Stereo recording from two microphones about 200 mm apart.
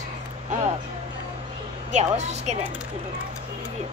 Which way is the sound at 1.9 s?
35° right (ahead or behind).